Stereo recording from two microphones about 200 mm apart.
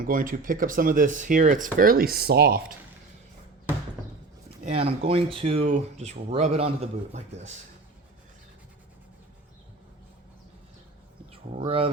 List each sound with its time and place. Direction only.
0.1 s speech: 45° right (ahead or behind)
4.6 s speech: 30° right (ahead or behind)
11.3 s speech: 30° right (ahead or behind)